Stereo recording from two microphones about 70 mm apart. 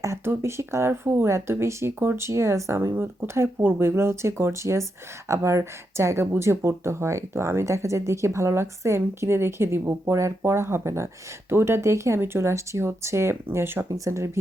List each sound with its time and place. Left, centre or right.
0.3 s speech: right
13.9 s speech: right